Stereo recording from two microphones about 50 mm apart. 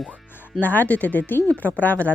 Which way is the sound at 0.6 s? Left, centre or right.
Left.